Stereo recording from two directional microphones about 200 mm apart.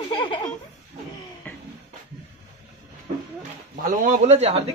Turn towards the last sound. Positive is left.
turn(degrees=-35)  # may be behind; listen again after turning